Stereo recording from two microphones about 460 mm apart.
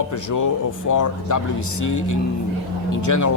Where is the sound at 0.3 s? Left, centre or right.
Left.